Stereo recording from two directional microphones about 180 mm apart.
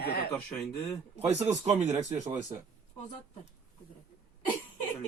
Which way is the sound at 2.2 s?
20° right (ahead or behind).